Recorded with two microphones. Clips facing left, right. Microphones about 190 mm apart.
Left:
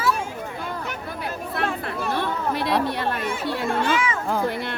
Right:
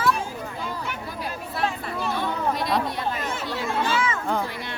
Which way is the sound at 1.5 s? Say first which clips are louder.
Left 1 dB; 60° left (ahead or behind).